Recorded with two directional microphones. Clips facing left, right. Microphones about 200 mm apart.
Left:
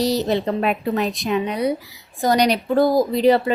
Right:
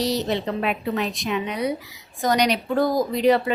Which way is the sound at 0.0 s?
35° left (ahead or behind).